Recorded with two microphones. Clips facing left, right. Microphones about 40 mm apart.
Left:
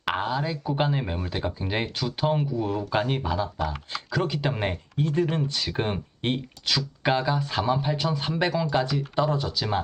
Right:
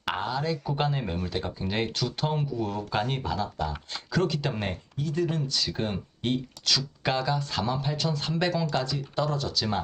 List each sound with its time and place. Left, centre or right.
0.0 s a sound: centre
0.3 s speech: centre
6.7 s speech: centre